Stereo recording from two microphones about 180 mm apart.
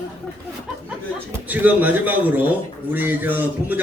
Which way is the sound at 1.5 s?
10° right (ahead or behind).